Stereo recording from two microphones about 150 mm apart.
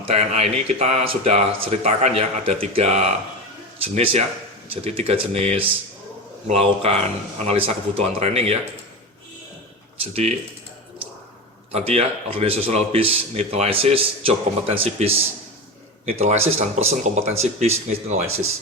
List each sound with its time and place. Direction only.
0.0 s a man's voice: 45° right (ahead or behind)
10.1 s speech: 45° right (ahead or behind)
11.7 s a man's voice: 45° right (ahead or behind)